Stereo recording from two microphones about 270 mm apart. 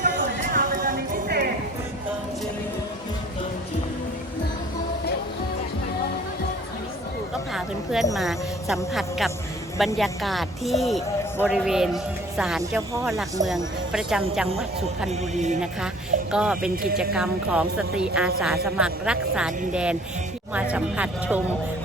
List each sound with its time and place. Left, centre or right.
0.0 s music: right
8.1 s speech: centre
15.1 s music: right
16.3 s speech: centre